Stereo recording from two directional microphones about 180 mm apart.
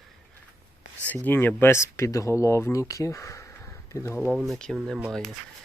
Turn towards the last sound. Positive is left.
turn(degrees=0)  # may be behind; listen again after turning